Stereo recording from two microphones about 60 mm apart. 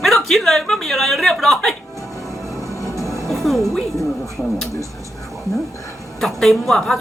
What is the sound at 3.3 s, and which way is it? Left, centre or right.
Music, centre.